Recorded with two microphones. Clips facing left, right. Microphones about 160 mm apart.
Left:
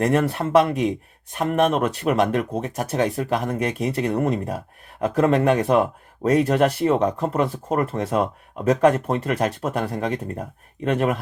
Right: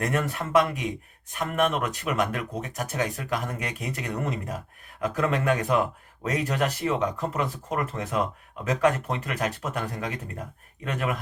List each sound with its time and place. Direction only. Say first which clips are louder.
0.0 s speech: left 8 dB; 35° left (ahead or behind)